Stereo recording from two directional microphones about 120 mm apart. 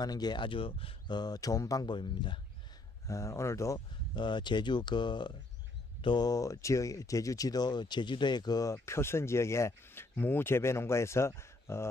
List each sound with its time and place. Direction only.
0.0 s speech: 35° left (ahead or behind)
3.1 s speech: 25° left (ahead or behind)
4.1 s speech: 40° left (ahead or behind)
8.8 s speech: 20° left (ahead or behind)